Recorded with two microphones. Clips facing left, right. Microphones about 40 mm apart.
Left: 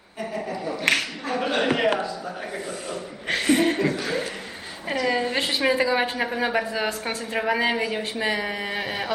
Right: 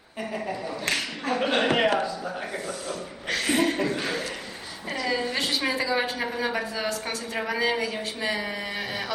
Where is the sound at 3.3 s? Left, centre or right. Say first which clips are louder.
Left 3 dB; left.